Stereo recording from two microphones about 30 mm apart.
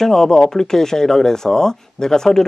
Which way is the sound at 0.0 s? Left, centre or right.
Centre.